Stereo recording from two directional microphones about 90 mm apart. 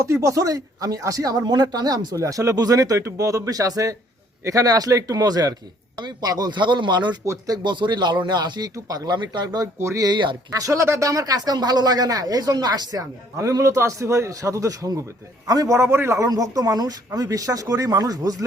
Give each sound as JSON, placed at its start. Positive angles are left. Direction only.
{"t": 0.0, "sound": "speech", "side_deg": -35}
{"t": 2.2, "sound": "a man's voice", "side_deg": -35}
{"t": 7.3, "sound": "speech", "side_deg": -45}
{"t": 9.7, "sound": "speech", "side_deg": -30}
{"t": 10.0, "sound": "speech", "side_deg": -55}
{"t": 10.5, "sound": "speech", "side_deg": -35}
{"t": 13.3, "sound": "a man's voice", "side_deg": -35}